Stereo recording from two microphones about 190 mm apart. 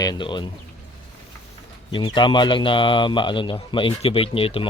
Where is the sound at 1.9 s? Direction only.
25° left (ahead or behind).